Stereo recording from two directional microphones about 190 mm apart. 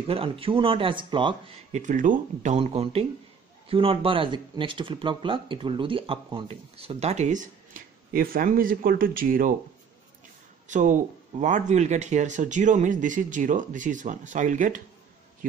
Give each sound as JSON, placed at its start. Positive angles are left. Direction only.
{"t": 0.0, "sound": "speech", "side_deg": -30}
{"t": 1.7, "sound": "speech", "side_deg": -40}
{"t": 10.7, "sound": "speech", "side_deg": -40}